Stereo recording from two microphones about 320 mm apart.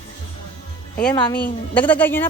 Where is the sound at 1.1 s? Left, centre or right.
Centre.